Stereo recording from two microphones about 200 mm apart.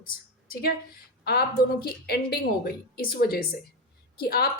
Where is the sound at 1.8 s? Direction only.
50° left (ahead or behind).